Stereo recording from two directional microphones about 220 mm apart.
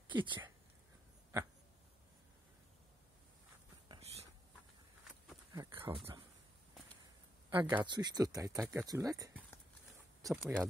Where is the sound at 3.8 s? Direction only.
25° right (ahead or behind).